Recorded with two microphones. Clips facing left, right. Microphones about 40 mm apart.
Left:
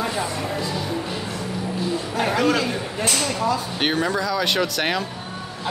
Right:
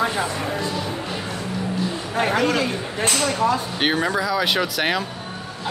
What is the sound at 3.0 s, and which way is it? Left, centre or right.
Speech, right.